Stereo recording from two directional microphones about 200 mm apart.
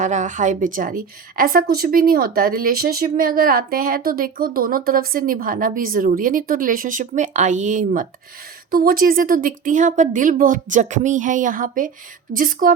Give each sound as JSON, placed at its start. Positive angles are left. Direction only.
{"t": 0.0, "sound": "a woman's voice", "side_deg": -40}